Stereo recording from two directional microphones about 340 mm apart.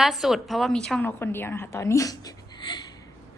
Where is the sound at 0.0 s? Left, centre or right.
Centre.